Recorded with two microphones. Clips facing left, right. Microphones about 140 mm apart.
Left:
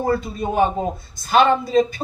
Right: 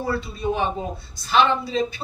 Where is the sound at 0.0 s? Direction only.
45° left (ahead or behind).